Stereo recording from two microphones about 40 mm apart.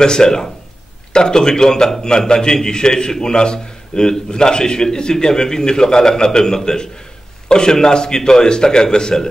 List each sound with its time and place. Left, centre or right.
0.0 s a man's voice: centre